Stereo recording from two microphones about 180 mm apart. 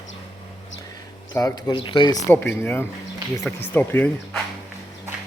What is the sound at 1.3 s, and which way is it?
Speech, 20° left (ahead or behind).